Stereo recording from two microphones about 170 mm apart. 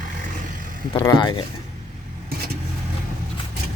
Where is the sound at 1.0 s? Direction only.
25° left (ahead or behind).